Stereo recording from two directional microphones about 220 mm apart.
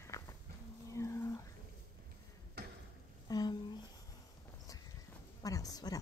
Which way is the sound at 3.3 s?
20° left (ahead or behind).